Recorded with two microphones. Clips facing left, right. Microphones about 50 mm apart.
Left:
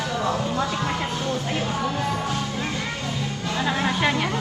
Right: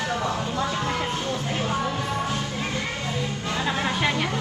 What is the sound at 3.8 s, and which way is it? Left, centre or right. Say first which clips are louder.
Speech: left 3 dB; left.